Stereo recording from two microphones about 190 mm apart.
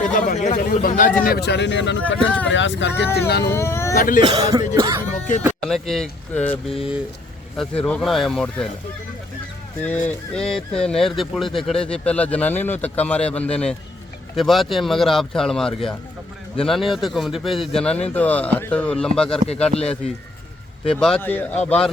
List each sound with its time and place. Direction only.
0.0 s speech: 40° left (ahead or behind)
1.2 s speech: 55° left (ahead or behind)
3.2 s speech: 55° left (ahead or behind)
3.5 s speech: 15° left (ahead or behind)
3.9 s speech: 45° left (ahead or behind)
4.2 s speech: 20° right (ahead or behind)
5.6 s speech: centre (ahead or behind)
6.7 s speech: 5° right (ahead or behind)
9.8 s speech: 5° left (ahead or behind)